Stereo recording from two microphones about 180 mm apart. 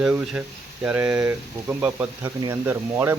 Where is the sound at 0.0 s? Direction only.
5° right (ahead or behind).